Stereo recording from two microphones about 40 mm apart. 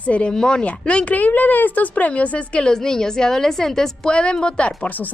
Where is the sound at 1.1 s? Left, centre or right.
Left.